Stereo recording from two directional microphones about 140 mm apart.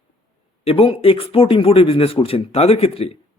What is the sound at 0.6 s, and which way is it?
Speech, 40° left (ahead or behind).